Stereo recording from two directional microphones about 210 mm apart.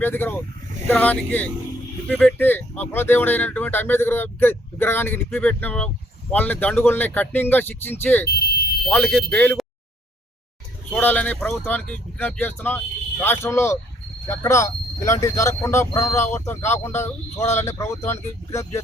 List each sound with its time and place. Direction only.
0.0 s speech: 10° left (ahead or behind)
8.3 s speech: 50° left (ahead or behind)
8.9 s speech: 5° left (ahead or behind)
10.9 s speech: 10° left (ahead or behind)